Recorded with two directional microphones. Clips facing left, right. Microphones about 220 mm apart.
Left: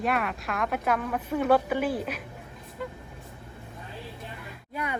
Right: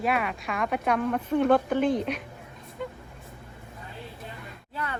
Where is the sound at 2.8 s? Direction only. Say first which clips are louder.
Right 1 dB; centre (ahead or behind).